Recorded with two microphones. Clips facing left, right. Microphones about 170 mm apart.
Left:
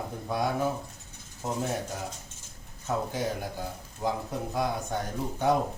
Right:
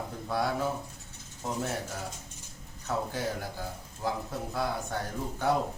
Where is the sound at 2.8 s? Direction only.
20° left (ahead or behind).